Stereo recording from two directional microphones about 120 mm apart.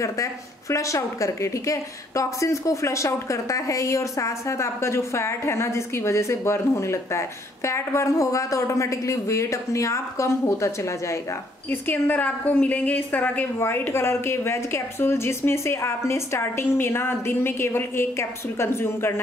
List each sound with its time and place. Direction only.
0.0 s speech: 25° left (ahead or behind)